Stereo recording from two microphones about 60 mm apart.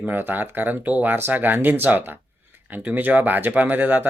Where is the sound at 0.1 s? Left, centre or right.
Right.